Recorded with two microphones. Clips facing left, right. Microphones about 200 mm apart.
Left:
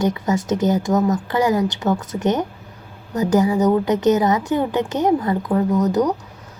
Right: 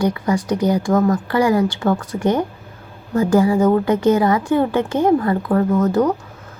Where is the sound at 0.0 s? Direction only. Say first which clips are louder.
Right 1 dB; 20° left (ahead or behind).